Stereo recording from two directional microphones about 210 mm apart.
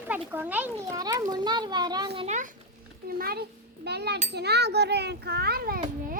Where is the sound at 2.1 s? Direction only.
30° right (ahead or behind).